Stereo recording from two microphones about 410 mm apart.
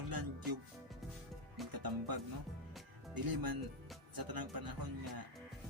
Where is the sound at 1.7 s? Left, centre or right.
Right.